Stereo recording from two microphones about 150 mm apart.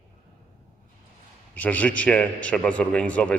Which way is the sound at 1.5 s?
10° left (ahead or behind).